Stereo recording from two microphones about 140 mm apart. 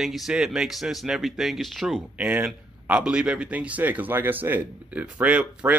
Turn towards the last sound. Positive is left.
turn(degrees=-10)  # may be behind; listen again after turning